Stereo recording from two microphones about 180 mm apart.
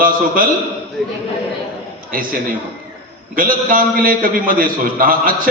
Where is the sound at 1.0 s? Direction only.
Centre (ahead or behind).